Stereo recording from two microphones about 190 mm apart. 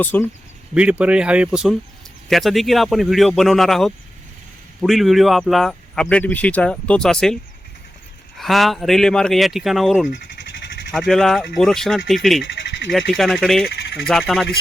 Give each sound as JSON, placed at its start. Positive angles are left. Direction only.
{"t": 0.0, "sound": "speech", "side_deg": 10}
{"t": 0.7, "sound": "speech", "side_deg": -5}
{"t": 8.4, "sound": "speech", "side_deg": 0}